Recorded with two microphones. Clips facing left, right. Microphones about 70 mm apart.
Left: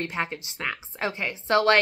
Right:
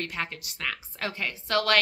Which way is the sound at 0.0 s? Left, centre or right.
Left.